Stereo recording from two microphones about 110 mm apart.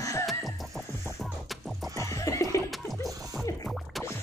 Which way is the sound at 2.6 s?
Centre (ahead or behind).